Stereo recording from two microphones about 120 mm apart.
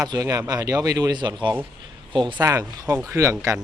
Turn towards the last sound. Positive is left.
turn(degrees=-25)  # may be behind; listen again after turning